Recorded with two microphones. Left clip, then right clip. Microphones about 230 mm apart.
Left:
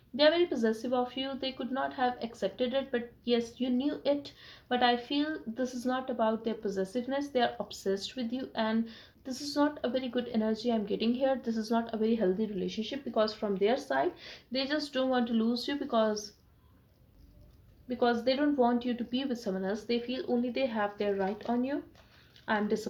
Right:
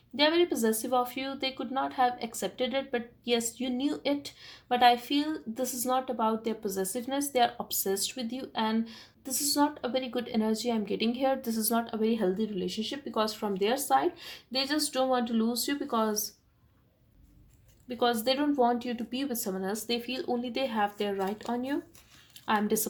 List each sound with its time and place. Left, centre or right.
0.2 s speech: right
17.8 s speech: right